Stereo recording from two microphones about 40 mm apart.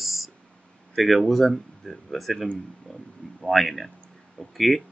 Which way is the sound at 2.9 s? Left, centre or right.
Centre.